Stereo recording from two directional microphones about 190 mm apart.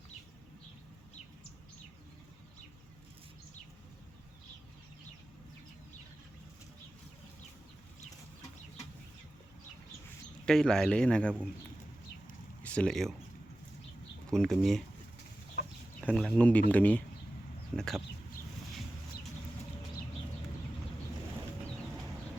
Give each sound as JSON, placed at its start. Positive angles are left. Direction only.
{"t": 10.4, "sound": "speech", "side_deg": 5}
{"t": 12.6, "sound": "speech", "side_deg": 5}
{"t": 14.3, "sound": "speech", "side_deg": 0}
{"t": 16.0, "sound": "speech", "side_deg": 0}